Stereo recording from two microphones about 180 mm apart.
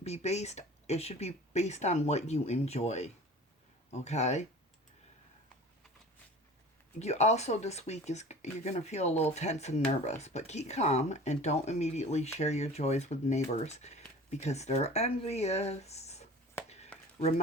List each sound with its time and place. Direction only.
0.0 s speech: 35° left (ahead or behind)
7.0 s speech: 35° left (ahead or behind)